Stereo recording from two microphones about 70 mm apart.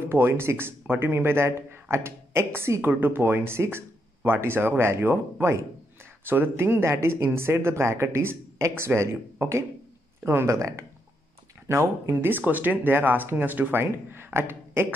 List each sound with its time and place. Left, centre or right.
0.1 s speech: right
10.5 s speech: right